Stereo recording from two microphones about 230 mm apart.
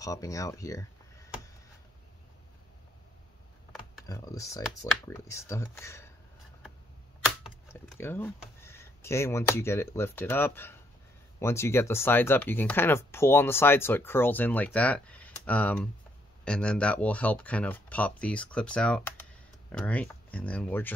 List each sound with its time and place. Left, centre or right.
0.0 s speech: centre
4.0 s speech: centre
7.6 s speech: centre